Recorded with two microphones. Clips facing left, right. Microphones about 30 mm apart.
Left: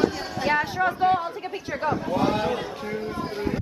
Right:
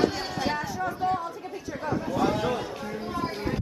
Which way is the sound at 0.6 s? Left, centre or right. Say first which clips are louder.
Left 7 dB; left.